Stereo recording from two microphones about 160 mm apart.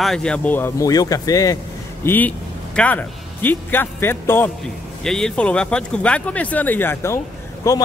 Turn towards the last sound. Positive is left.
turn(degrees=20)  # may be behind; listen again after turning